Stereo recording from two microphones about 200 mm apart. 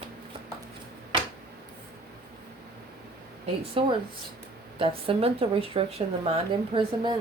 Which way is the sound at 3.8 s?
25° right (ahead or behind).